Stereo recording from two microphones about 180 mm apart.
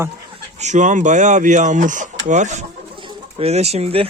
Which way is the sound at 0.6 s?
40° right (ahead or behind).